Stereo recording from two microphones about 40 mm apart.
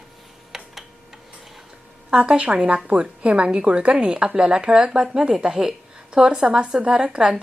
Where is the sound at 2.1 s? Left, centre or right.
Right.